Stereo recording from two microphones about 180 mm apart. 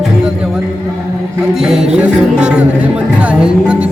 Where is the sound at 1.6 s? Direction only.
Centre (ahead or behind).